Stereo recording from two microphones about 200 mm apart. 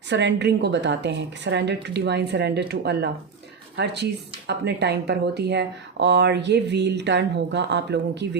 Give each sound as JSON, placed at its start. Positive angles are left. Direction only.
{"t": 0.1, "sound": "speech", "side_deg": -60}